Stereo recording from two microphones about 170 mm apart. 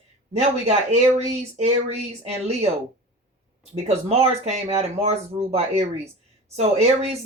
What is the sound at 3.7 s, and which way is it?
Speech, 35° right (ahead or behind).